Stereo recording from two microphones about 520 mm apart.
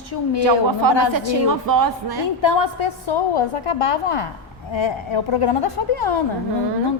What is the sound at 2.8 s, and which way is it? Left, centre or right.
A woman's voice, left.